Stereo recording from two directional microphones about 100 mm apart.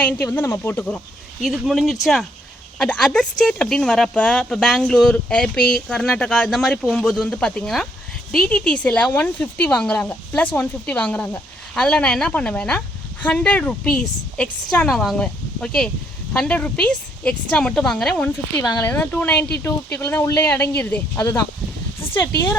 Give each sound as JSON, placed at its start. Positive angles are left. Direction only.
{"t": 0.0, "sound": "speech", "side_deg": 15}
{"t": 1.4, "sound": "speech", "side_deg": 0}
{"t": 18.8, "sound": "speech", "side_deg": 20}
{"t": 21.2, "sound": "speech", "side_deg": 30}